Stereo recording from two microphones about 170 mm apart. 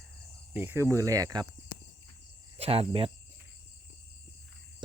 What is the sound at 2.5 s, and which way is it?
Speech, 35° right (ahead or behind).